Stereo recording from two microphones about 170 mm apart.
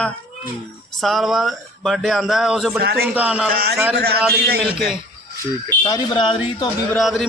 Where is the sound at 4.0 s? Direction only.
70° right (ahead or behind).